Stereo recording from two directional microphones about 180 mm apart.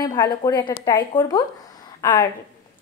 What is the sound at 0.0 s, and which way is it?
Speech, 25° left (ahead or behind).